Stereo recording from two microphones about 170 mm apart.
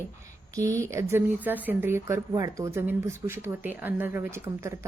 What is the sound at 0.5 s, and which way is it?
Speech, 20° right (ahead or behind).